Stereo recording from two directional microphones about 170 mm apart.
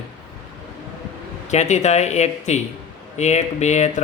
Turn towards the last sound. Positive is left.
turn(degrees=45)  # may be behind; listen again after turning